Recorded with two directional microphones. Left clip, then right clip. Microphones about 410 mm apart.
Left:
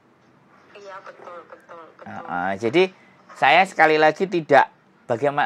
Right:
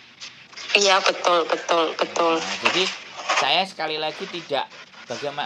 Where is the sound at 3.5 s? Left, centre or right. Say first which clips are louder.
Left 7 dB; left.